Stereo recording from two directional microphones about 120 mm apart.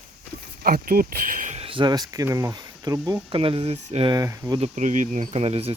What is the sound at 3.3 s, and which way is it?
Speech, 50° right (ahead or behind).